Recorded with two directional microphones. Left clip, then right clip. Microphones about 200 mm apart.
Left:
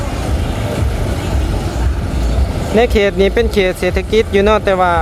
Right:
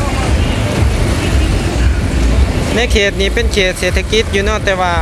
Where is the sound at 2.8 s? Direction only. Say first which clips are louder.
Left 2 dB; 20° left (ahead or behind).